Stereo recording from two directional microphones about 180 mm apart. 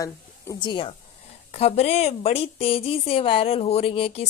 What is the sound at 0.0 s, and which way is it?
A woman's voice, 20° left (ahead or behind).